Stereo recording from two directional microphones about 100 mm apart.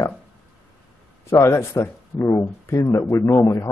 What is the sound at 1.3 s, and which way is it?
A man's voice, 30° left (ahead or behind).